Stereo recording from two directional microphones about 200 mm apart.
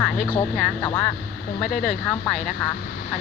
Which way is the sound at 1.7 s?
45° left (ahead or behind).